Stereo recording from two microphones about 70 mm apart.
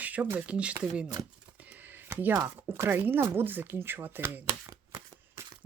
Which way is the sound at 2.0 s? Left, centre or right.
Right.